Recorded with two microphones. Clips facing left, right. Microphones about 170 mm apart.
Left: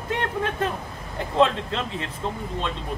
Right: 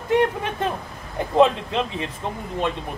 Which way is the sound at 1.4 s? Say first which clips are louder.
Right 3 dB; 15° right (ahead or behind).